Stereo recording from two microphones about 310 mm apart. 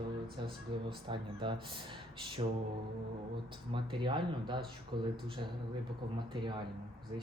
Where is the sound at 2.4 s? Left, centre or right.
Right.